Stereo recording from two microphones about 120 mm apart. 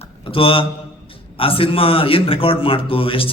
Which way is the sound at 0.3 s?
50° left (ahead or behind).